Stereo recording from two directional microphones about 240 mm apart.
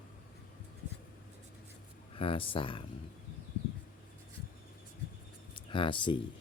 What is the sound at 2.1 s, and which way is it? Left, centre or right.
Speech, left.